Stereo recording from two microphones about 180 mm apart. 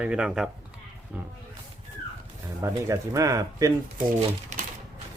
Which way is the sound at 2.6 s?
15° right (ahead or behind).